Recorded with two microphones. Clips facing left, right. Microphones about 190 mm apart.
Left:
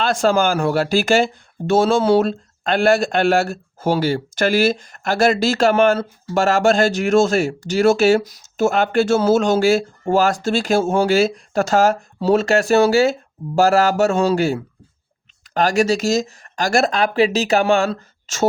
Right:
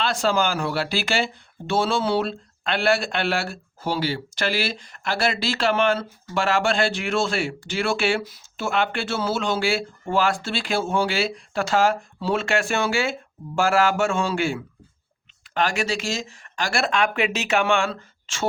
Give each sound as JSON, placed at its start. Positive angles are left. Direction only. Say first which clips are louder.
{"t": 0.0, "sound": "speech", "louder": "left 6 dB", "side_deg": 50}